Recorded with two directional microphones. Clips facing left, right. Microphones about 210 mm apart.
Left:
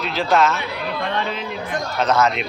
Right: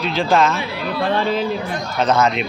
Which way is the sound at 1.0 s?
30° right (ahead or behind).